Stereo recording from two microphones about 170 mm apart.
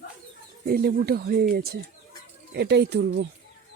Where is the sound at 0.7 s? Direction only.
65° right (ahead or behind).